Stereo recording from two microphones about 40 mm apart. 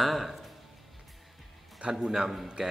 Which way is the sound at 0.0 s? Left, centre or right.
Centre.